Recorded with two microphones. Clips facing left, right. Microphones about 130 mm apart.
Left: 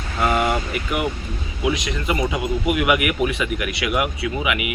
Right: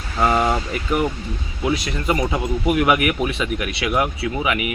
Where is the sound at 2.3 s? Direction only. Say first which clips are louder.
Right 2 dB; 30° right (ahead or behind).